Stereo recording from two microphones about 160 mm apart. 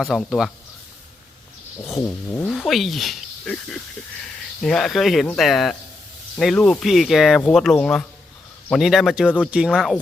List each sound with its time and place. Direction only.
0.0 s speech: centre (ahead or behind)
2.0 s speech: 15° left (ahead or behind)
2.5 s speech: centre (ahead or behind)